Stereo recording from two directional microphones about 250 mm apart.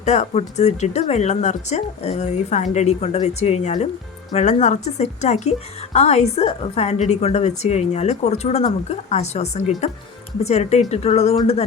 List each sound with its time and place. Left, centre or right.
0.0 s speech: left